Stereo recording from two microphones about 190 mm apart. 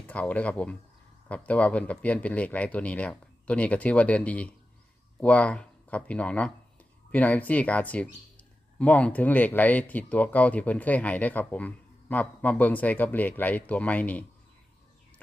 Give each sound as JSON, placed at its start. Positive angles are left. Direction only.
{"t": 0.1, "sound": "speech", "side_deg": 5}